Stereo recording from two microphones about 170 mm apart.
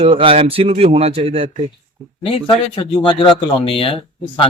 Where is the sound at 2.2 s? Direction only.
30° left (ahead or behind).